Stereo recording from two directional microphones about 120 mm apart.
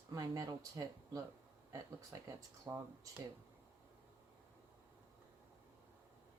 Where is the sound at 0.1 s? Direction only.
30° right (ahead or behind).